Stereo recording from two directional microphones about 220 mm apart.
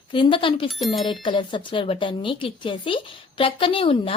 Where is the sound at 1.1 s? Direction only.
20° left (ahead or behind).